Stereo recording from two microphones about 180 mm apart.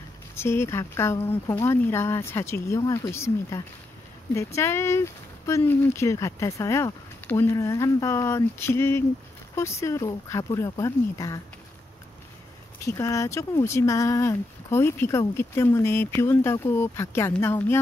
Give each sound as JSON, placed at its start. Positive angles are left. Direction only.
{"t": 0.4, "sound": "speech", "side_deg": 15}
{"t": 12.8, "sound": "speech", "side_deg": 15}